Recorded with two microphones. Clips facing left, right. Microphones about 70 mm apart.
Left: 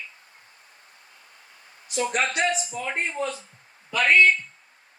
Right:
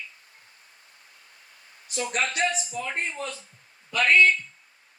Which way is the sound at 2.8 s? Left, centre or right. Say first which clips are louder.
Left 2 dB; left.